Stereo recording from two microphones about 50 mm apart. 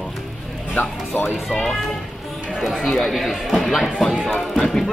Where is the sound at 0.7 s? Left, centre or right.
Left.